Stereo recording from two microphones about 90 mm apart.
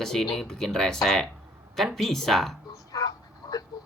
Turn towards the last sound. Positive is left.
turn(degrees=45)  # may be behind; listen again after turning